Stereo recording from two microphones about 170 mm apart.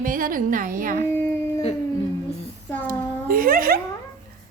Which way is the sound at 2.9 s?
55° right (ahead or behind).